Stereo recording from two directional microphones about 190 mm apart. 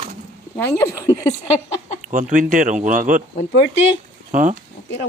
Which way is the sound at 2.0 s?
45° right (ahead or behind).